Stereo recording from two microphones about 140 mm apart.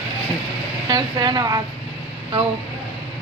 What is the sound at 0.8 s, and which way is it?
Speech, 30° right (ahead or behind).